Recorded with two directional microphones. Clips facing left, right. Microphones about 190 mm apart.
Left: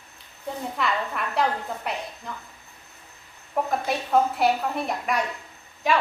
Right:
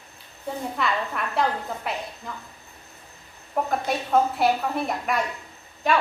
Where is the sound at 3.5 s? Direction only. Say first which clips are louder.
Even; centre (ahead or behind).